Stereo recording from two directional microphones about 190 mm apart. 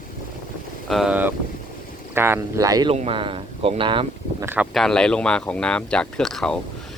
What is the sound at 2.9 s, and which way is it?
Speech, 30° right (ahead or behind).